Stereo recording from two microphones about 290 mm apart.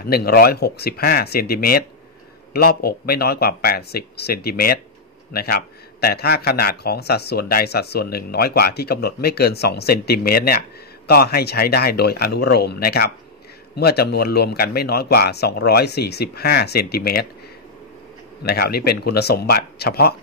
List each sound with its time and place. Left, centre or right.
0.0 s a man's voice: left
18.4 s a man's voice: left